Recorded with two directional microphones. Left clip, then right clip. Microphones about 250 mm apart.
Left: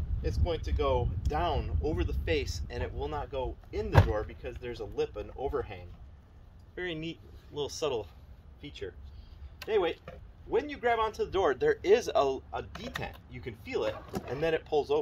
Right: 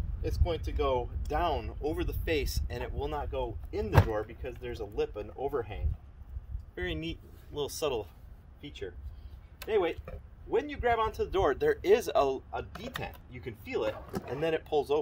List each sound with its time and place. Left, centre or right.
0.4 s speech: right